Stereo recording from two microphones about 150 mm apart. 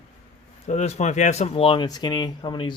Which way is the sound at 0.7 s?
50° left (ahead or behind).